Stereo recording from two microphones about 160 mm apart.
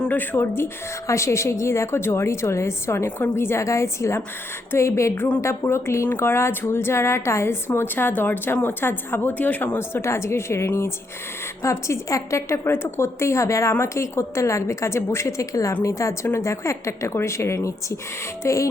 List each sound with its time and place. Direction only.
0.0 s a woman's voice: 10° left (ahead or behind)
18.4 s music: 20° left (ahead or behind)